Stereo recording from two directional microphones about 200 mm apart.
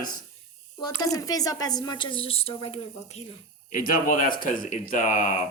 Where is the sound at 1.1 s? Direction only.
15° left (ahead or behind).